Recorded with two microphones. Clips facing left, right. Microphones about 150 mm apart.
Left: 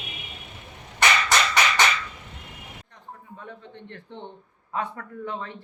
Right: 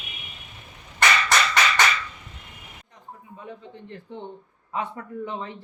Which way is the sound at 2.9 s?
10° right (ahead or behind).